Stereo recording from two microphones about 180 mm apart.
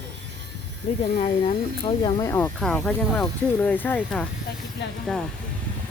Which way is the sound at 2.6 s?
5° left (ahead or behind).